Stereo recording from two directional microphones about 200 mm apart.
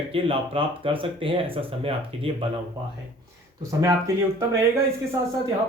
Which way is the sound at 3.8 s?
15° right (ahead or behind).